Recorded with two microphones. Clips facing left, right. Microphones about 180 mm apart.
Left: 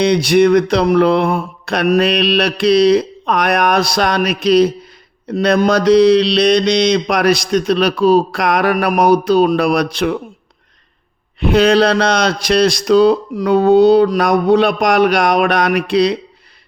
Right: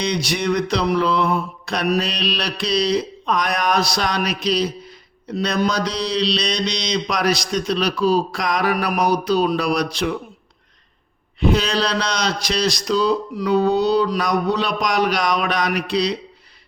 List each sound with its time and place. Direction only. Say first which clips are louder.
0.0 s mantra: left 11 dB; 55° left (ahead or behind)
11.3 s mantra: left 8 dB; 60° left (ahead or behind)